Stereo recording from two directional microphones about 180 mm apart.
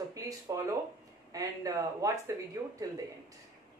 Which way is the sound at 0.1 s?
15° right (ahead or behind).